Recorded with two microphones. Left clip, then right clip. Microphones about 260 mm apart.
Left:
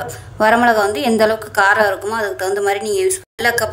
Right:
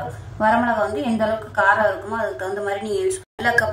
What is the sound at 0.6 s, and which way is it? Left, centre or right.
A woman's voice, left.